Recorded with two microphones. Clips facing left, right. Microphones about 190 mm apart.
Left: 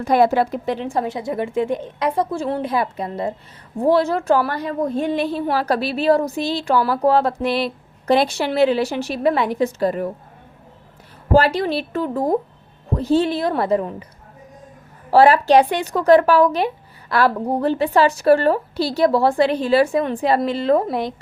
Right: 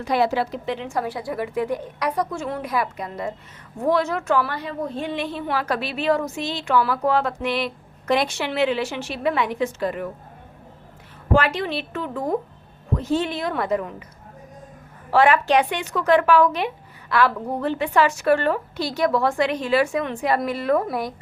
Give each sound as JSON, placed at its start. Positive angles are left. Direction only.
{"t": 0.0, "sound": "a woman's voice", "side_deg": 50}
{"t": 11.3, "sound": "a woman's voice", "side_deg": 35}
{"t": 15.1, "sound": "a woman's voice", "side_deg": 35}